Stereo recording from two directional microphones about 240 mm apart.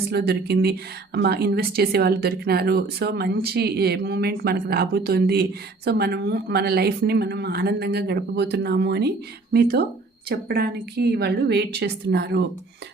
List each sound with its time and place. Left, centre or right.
0.1 s speech: right